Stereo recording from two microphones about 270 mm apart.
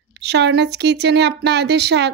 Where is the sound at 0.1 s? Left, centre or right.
Right.